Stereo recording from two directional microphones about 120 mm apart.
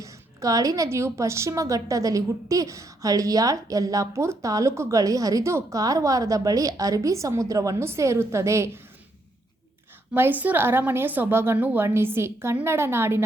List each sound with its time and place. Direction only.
0.0 s a woman's voice: 30° right (ahead or behind)
10.2 s a woman's voice: 15° right (ahead or behind)